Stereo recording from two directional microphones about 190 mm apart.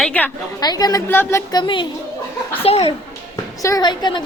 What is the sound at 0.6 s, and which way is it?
Speech, 20° left (ahead or behind).